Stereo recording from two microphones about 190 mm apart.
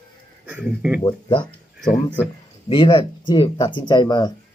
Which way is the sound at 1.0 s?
25° left (ahead or behind).